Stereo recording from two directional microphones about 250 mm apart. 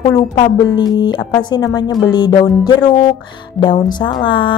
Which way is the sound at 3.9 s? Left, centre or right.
Centre.